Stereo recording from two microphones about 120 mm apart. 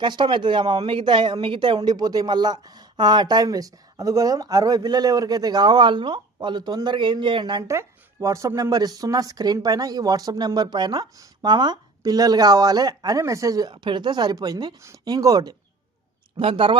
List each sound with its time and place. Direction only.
0.0 s speech: 40° right (ahead or behind)
7.7 s speech: 25° right (ahead or behind)
16.4 s speech: 50° right (ahead or behind)